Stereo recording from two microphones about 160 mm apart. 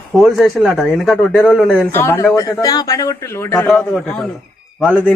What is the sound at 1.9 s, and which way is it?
Speech, 15° left (ahead or behind).